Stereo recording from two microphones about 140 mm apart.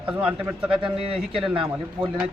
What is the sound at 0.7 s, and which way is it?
A man's voice, 40° right (ahead or behind).